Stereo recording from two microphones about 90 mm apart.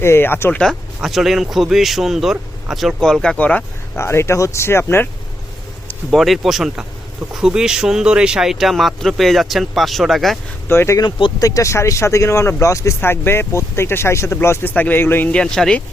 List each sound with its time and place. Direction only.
0.0 s speech: 25° left (ahead or behind)
0.6 s speech: centre (ahead or behind)
3.9 s speech: 30° left (ahead or behind)
6.1 s speech: centre (ahead or behind)
10.7 s speech: 25° left (ahead or behind)
11.3 s speech: 40° left (ahead or behind); by 15.3 s 25° left (ahead or behind)
15.3 s speech: 10° left (ahead or behind)